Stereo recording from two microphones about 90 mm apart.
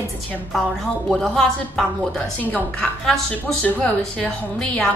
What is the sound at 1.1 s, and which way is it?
A woman's voice, 5° left (ahead or behind).